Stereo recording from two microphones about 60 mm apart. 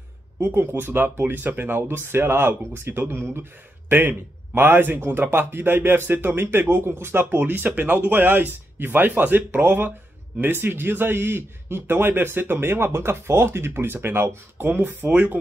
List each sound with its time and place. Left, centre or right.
0.4 s speech: right